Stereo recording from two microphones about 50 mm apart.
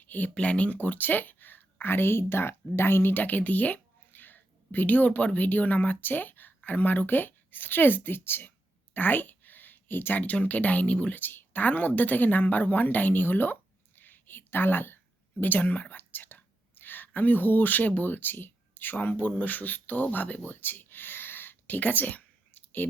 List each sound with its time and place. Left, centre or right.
0.0 s a sound: left
0.3 s speech: left
3.2 s speech: left
11.1 s a woman's voice: left